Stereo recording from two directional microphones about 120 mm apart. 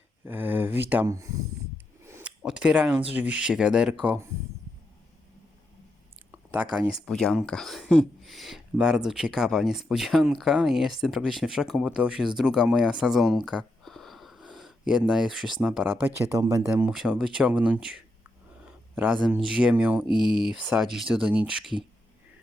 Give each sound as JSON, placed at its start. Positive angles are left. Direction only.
{"t": 0.3, "sound": "speech", "side_deg": -15}
{"t": 1.0, "sound": "speech", "side_deg": -25}
{"t": 2.2, "sound": "speech", "side_deg": -10}
{"t": 6.3, "sound": "speech", "side_deg": -15}
{"t": 7.0, "sound": "speech", "side_deg": 5}
{"t": 16.0, "sound": "speech", "side_deg": -20}
{"t": 16.6, "sound": "speech", "side_deg": -10}
{"t": 18.6, "sound": "a sound", "side_deg": -10}
{"t": 19.3, "sound": "speech", "side_deg": -10}
{"t": 20.2, "sound": "speech", "side_deg": -5}